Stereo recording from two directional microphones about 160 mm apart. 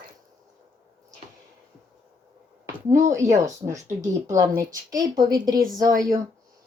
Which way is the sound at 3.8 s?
55° right (ahead or behind).